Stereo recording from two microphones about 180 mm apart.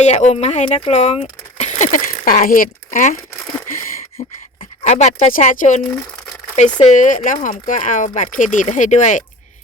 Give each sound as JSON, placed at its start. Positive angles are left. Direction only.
{"t": 0.0, "sound": "speech", "side_deg": 40}
{"t": 4.2, "sound": "speech", "side_deg": 45}
{"t": 6.8, "sound": "speech", "side_deg": 45}